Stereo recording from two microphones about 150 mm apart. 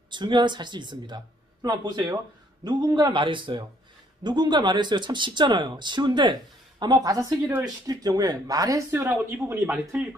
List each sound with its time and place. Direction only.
0.1 s speech: 30° right (ahead or behind); by 10.0 s 15° right (ahead or behind)